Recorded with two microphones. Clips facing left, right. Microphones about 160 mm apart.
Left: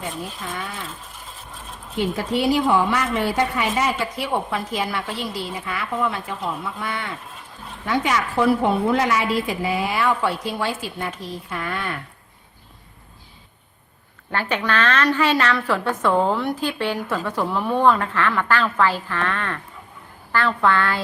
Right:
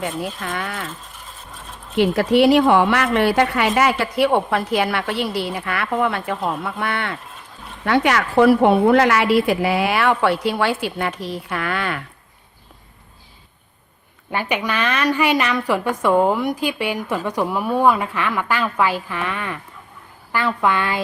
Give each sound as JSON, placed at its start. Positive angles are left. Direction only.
{"t": 0.0, "sound": "a woman's voice", "side_deg": -75}
{"t": 2.0, "sound": "a woman's voice", "side_deg": -70}
{"t": 14.3, "sound": "a woman's voice", "side_deg": -15}